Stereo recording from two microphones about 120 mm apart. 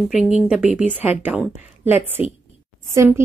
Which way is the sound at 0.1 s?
5° right (ahead or behind).